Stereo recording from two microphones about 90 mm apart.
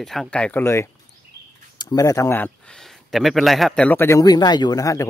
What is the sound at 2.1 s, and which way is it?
Speech, 35° left (ahead or behind).